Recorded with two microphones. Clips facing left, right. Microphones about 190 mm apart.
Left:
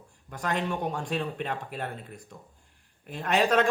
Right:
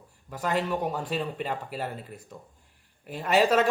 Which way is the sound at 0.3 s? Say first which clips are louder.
Right 2 dB; 5° right (ahead or behind).